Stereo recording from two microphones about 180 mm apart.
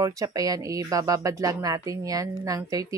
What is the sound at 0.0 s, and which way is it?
Speech, 20° right (ahead or behind).